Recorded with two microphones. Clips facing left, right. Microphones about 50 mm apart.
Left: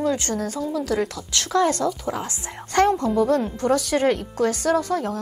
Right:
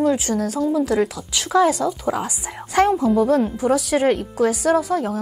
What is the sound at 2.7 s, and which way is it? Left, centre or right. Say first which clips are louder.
A woman's voice: right 2 dB; centre.